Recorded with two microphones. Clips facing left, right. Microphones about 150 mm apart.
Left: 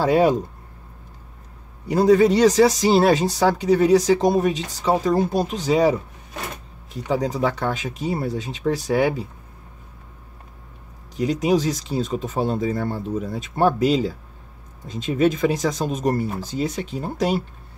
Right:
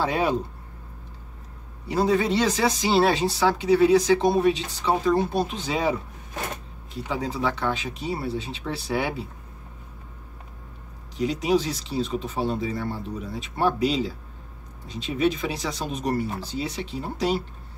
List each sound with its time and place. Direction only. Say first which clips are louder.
0.0 s speech: left 7 dB; 45° left (ahead or behind)
1.9 s speech: left 7 dB; 45° left (ahead or behind)
7.1 s speech: left 5 dB; 40° left (ahead or behind)
11.1 s speech: left 3 dB; 45° left (ahead or behind)